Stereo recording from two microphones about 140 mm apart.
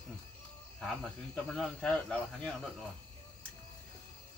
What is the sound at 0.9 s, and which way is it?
Speech, 5° left (ahead or behind).